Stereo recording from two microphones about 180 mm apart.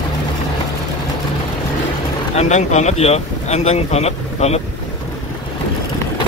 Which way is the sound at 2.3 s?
40° left (ahead or behind).